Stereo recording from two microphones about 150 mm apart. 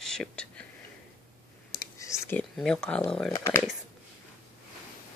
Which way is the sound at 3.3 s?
20° left (ahead or behind).